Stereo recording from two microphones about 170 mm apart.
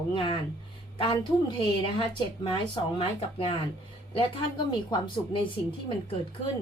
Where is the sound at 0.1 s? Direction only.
30° left (ahead or behind).